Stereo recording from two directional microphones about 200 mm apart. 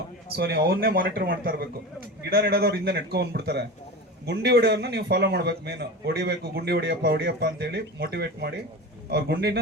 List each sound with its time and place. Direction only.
0.3 s a man's voice: 55° right (ahead or behind)